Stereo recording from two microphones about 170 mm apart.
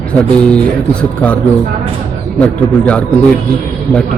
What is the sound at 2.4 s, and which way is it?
Speech, 10° left (ahead or behind).